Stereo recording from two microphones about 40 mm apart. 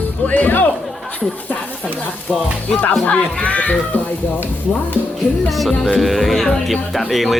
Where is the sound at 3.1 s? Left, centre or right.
Left.